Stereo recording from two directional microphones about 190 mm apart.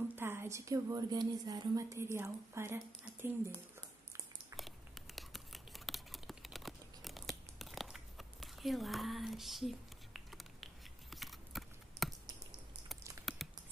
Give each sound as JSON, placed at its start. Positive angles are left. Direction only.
{"t": 0.1, "sound": "a woman's voice", "side_deg": -10}
{"t": 4.6, "sound": "a sound", "side_deg": 0}
{"t": 13.2, "sound": "patter", "side_deg": 0}